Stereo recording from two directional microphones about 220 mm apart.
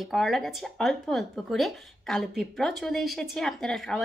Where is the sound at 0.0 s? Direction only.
Centre (ahead or behind).